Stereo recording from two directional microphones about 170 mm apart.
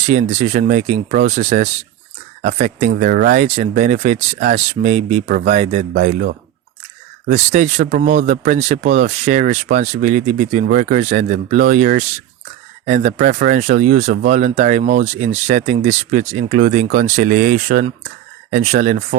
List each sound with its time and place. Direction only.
0.0 s speech: 45° right (ahead or behind)
3.0 s speech: 55° right (ahead or behind)